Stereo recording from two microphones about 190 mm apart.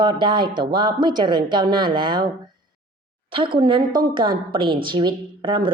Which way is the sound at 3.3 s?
25° right (ahead or behind).